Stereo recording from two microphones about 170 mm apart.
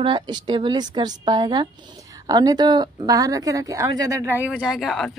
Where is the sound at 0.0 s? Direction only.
25° right (ahead or behind).